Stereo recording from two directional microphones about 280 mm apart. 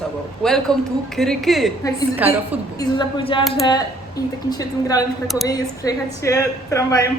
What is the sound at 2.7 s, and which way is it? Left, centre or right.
Speech, centre.